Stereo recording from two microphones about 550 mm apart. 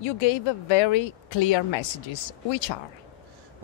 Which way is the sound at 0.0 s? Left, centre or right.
Left.